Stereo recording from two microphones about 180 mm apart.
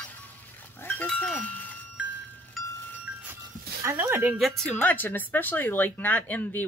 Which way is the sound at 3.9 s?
15° right (ahead or behind).